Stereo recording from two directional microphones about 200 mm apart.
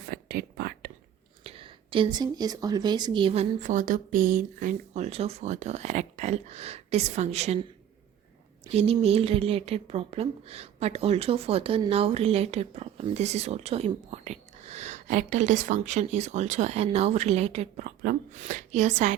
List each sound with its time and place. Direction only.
0.1 s whispering: 50° right (ahead or behind)
1.5 s speech: 25° right (ahead or behind)
3.6 s speech: 40° right (ahead or behind)
8.7 s speech: 30° right (ahead or behind)